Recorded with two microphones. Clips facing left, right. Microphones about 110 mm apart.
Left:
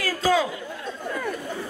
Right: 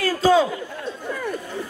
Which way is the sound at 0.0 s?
30° right (ahead or behind).